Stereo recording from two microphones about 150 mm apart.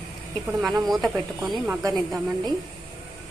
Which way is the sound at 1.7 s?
20° right (ahead or behind).